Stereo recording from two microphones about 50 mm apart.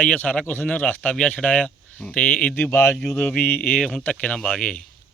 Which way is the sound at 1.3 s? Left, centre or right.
Left.